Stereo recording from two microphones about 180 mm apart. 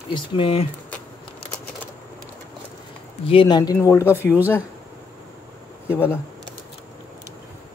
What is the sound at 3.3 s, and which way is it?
Speech, 25° left (ahead or behind).